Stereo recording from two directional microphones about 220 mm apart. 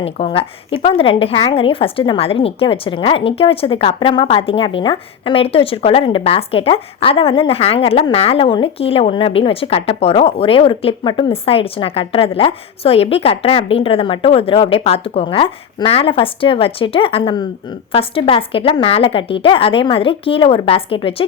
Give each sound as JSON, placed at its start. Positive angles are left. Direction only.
{"t": 0.0, "sound": "speech", "side_deg": 25}